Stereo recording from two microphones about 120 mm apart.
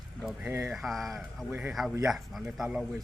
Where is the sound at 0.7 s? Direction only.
Centre (ahead or behind).